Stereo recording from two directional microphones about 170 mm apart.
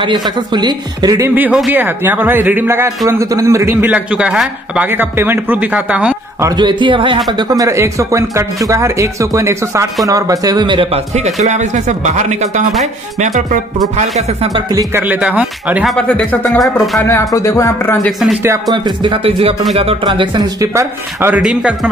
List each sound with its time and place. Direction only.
0.0 s a man's voice: 25° right (ahead or behind); by 6.5 s 10° right (ahead or behind)
6.5 s a man's voice: 25° right (ahead or behind); by 12.6 s 45° right (ahead or behind)
13.9 s a man's voice: 40° right (ahead or behind)
14.5 s speech: 20° right (ahead or behind); by 17.0 s centre (ahead or behind)
17.0 s speech: 15° left (ahead or behind)
18.4 s speech: 20° right (ahead or behind)